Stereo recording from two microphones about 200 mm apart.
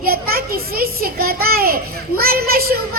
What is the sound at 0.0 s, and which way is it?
A child's voice, 50° right (ahead or behind).